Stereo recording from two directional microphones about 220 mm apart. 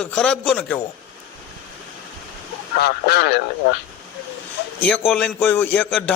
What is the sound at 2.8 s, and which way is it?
Speech, 45° left (ahead or behind).